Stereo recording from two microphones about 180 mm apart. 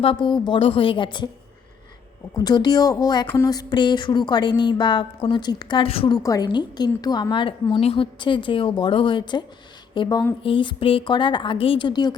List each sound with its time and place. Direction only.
0.0 s a woman's voice: 30° left (ahead or behind)
2.3 s a woman's voice: 20° left (ahead or behind)
6.2 s a woman's voice: 20° left (ahead or behind)